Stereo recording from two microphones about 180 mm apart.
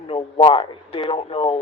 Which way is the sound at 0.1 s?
30° left (ahead or behind).